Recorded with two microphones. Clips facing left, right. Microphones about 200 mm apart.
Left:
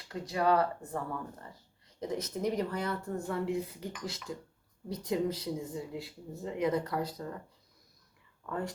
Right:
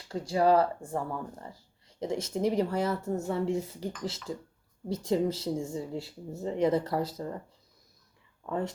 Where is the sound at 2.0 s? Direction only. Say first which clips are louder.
Right 4 dB; 25° right (ahead or behind).